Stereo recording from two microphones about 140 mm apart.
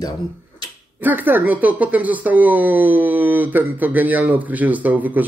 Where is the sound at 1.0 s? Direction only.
15° right (ahead or behind).